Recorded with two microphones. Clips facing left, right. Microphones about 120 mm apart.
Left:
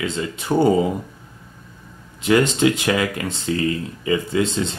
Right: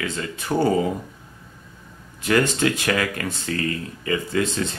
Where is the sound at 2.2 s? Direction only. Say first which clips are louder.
Left 3 dB; 20° left (ahead or behind).